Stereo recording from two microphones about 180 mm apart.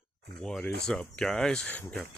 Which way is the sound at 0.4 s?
5° left (ahead or behind).